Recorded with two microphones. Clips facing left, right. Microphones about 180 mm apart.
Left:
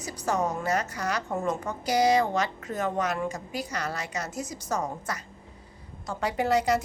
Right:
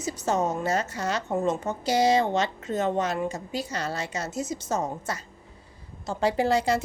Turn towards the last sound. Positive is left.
turn(degrees=-30)  # may be behind; listen again after turning